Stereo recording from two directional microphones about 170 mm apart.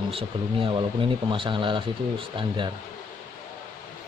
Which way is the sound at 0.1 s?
30° right (ahead or behind).